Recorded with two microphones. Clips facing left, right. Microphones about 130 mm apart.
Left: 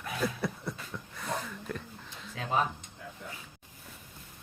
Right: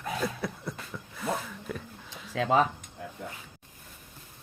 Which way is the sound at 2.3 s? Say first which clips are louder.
Right 8 dB; 90° right.